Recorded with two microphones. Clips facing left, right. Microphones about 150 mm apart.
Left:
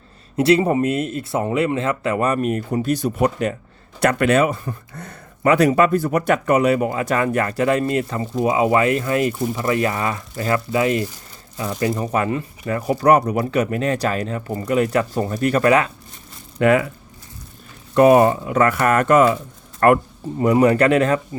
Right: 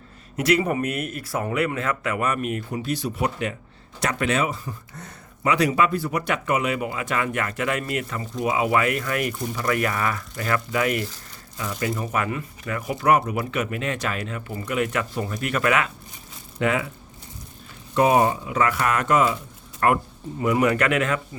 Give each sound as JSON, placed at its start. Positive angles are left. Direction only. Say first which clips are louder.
{"t": 0.3, "sound": "speech", "louder": "left 6 dB", "side_deg": 30}
{"t": 4.0, "sound": "speech", "louder": "left 7 dB", "side_deg": 55}
{"t": 16.6, "sound": "speech", "louder": "left 8 dB", "side_deg": 55}
{"t": 17.9, "sound": "speech", "louder": "left 6 dB", "side_deg": 55}
{"t": 20.4, "sound": "speech", "louder": "left 6 dB", "side_deg": 35}